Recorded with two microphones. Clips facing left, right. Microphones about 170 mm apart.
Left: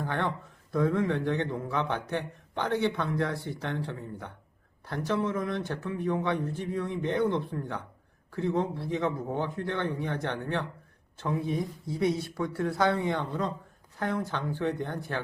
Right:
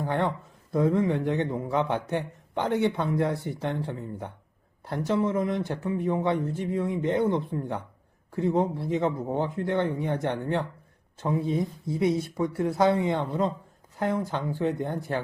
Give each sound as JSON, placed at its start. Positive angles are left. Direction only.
{"t": 0.0, "sound": "a man's voice", "side_deg": -20}